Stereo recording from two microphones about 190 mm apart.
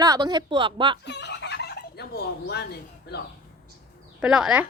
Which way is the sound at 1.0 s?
65° left (ahead or behind).